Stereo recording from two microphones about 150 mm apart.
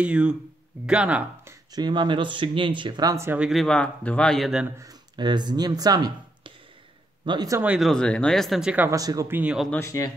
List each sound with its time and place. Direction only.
0.0 s speech: 5° right (ahead or behind)
1.7 s speech: 30° right (ahead or behind)
3.3 s speech: centre (ahead or behind)
4.7 s speech: 25° right (ahead or behind)
7.6 s speech: 5° right (ahead or behind)
7.9 s speech: 5° left (ahead or behind)
8.9 s speech: 25° right (ahead or behind)
9.4 s speech: 5° right (ahead or behind)
9.7 s speech: 20° left (ahead or behind)